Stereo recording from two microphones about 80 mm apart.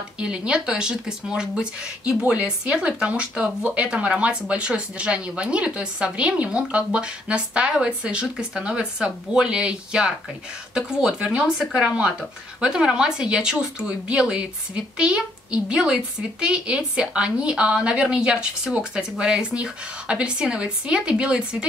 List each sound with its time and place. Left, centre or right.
0.2 s speech: centre